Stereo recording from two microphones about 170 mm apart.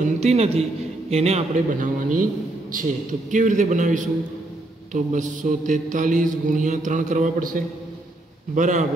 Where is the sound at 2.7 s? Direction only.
50° right (ahead or behind).